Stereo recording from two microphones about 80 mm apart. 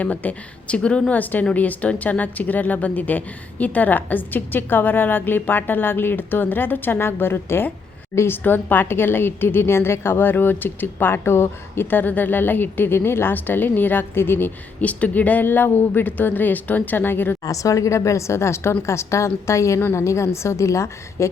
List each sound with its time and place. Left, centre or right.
0.0 s a woman's voice: centre
17.4 s a woman's voice: left